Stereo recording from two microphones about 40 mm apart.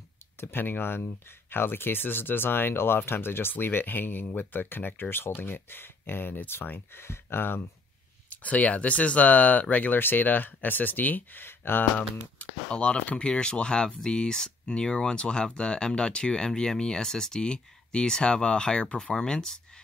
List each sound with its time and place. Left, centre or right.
0.4 s speech: left
7.0 s speech: left
8.3 s speech: left
9.9 s speech: left
11.4 s speech: left
12.4 s speech: left